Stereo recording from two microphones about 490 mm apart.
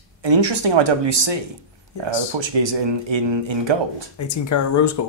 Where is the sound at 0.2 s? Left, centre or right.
Right.